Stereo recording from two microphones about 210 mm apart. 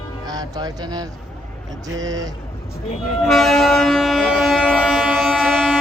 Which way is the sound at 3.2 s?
Centre (ahead or behind).